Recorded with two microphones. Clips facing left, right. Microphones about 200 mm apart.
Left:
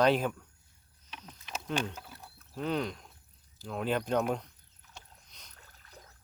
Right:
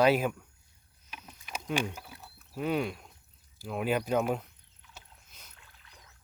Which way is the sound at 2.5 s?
10° right (ahead or behind).